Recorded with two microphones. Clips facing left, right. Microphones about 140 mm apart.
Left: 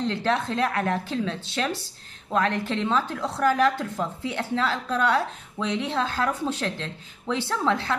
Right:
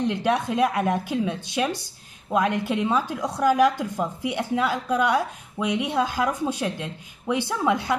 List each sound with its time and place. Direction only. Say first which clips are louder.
0.0 s a woman's voice: right 2 dB; 15° right (ahead or behind)